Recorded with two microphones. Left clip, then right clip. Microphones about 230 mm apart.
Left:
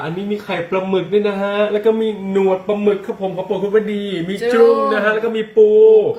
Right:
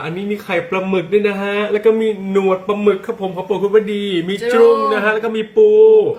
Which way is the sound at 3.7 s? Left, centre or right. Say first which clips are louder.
Right 3 dB; right.